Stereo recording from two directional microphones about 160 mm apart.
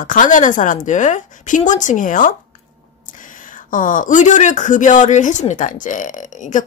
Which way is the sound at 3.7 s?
55° left (ahead or behind).